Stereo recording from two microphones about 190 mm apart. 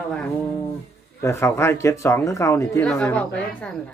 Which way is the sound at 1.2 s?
15° left (ahead or behind).